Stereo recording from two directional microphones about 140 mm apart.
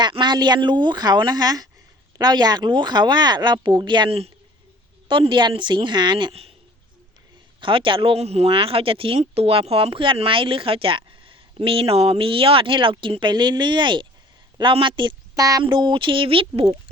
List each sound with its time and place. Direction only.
0.0 s speech: 30° right (ahead or behind)
7.6 s a woman's voice: 40° right (ahead or behind)